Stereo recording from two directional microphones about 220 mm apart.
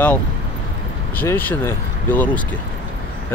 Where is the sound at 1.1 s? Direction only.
10° left (ahead or behind).